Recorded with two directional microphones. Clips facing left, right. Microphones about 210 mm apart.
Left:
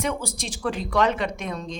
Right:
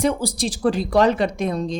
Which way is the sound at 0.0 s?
35° right (ahead or behind).